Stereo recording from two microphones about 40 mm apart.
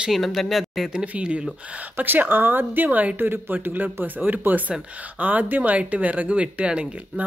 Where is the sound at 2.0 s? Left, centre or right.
Right.